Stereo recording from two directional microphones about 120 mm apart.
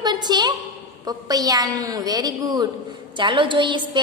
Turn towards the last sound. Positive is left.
turn(degrees=-40)  # may be behind; listen again after turning